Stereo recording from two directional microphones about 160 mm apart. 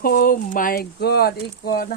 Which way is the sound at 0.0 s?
65° left (ahead or behind).